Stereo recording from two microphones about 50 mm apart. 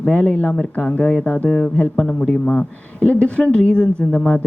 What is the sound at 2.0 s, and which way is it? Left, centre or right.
Speech, centre.